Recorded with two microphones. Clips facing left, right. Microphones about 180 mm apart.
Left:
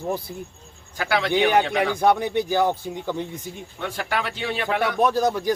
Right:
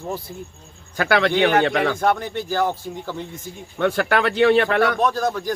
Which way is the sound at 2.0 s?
15° left (ahead or behind).